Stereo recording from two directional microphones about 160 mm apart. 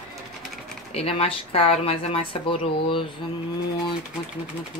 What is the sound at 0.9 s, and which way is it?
Speech, 35° left (ahead or behind).